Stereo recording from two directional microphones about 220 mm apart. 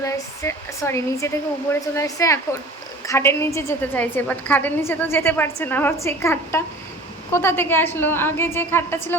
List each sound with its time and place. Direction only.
0.0 s a woman's voice: 10° left (ahead or behind)